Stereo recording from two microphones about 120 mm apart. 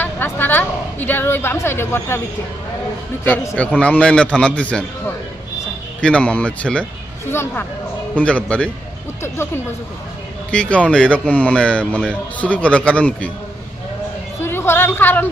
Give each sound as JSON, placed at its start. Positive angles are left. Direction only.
{"t": 0.0, "sound": "speech", "side_deg": 15}
{"t": 3.6, "sound": "speech", "side_deg": 10}
{"t": 10.5, "sound": "speech", "side_deg": 10}
{"t": 14.4, "sound": "a woman's voice", "side_deg": 20}